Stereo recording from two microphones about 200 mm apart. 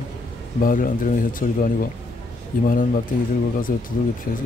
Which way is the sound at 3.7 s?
45° left (ahead or behind).